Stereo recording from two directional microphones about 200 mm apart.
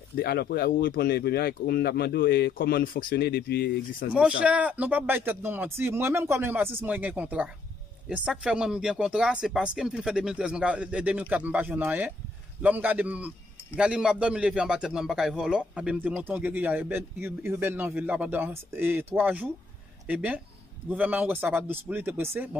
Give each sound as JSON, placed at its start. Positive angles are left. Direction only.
{"t": 0.1, "sound": "speech", "side_deg": 50}
{"t": 4.1, "sound": "a man's voice", "side_deg": -5}